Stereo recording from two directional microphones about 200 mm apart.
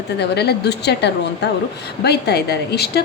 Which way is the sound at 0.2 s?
55° left (ahead or behind).